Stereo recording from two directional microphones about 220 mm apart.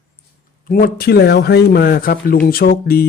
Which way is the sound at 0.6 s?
40° left (ahead or behind).